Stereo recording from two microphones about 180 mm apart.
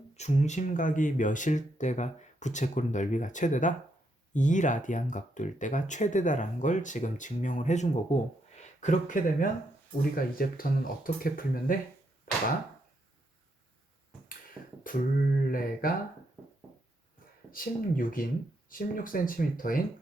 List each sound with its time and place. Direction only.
0.2 s speech: 40° left (ahead or behind)
14.6 s a sound: 10° right (ahead or behind)
15.4 s speech: 50° left (ahead or behind)
17.5 s speech: 50° left (ahead or behind)